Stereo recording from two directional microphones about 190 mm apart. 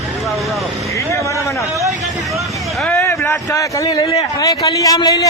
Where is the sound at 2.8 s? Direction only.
10° left (ahead or behind).